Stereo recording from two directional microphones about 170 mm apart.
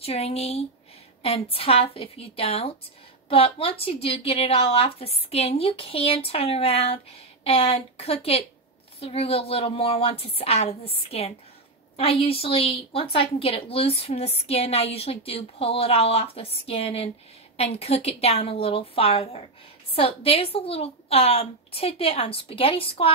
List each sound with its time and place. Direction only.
0.0 s a woman's voice: 35° left (ahead or behind)